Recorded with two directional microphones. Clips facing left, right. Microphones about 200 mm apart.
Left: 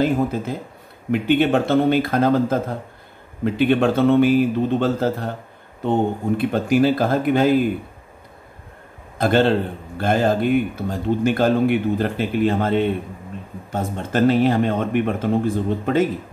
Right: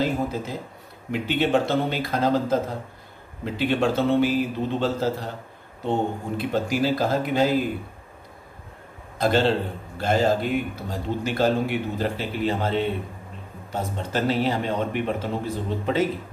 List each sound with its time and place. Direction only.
0.0 s a man's voice: 55° left (ahead or behind)
9.2 s a man's voice: 55° left (ahead or behind)